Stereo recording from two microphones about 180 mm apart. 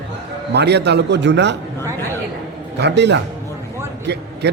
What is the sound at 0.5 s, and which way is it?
A man's voice, 70° right (ahead or behind).